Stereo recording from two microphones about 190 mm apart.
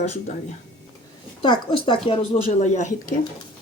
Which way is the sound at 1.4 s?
25° left (ahead or behind).